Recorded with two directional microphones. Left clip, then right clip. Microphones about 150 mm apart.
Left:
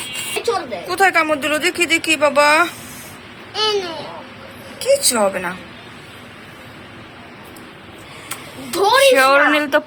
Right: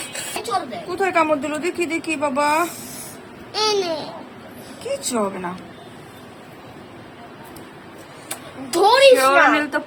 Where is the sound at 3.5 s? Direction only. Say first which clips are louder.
Left 1 dB; 75° right (ahead or behind).